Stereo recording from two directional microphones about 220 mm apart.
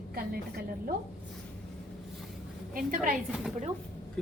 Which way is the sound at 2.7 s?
40° right (ahead or behind).